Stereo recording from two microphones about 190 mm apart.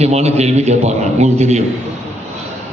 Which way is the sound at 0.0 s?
35° right (ahead or behind).